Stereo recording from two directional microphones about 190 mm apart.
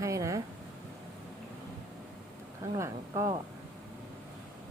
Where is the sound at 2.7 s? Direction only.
15° right (ahead or behind).